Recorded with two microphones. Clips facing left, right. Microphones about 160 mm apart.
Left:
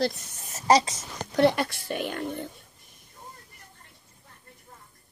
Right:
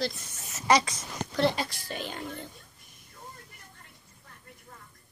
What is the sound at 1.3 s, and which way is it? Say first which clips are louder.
Speech: left 6 dB; 60° left (ahead or behind).